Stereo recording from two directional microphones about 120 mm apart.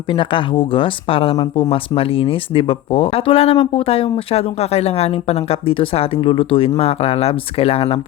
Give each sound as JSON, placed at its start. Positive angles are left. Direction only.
{"t": 0.1, "sound": "speech", "side_deg": 45}